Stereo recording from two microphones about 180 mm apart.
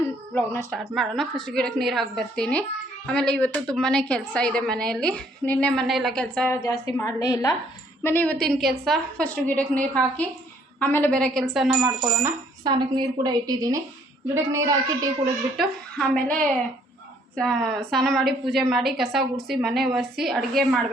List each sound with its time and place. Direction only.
0.3 s a woman's voice: 10° left (ahead or behind)
0.9 s a woman's voice: centre (ahead or behind)
7.0 s a woman's voice: 20° left (ahead or behind); by 12.3 s 5° right (ahead or behind)
12.6 s a woman's voice: 25° right (ahead or behind)
15.5 s a woman's voice: centre (ahead or behind)
17.3 s a woman's voice: centre (ahead or behind)